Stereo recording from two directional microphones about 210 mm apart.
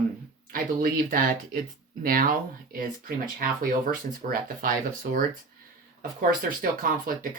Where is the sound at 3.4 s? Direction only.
40° right (ahead or behind).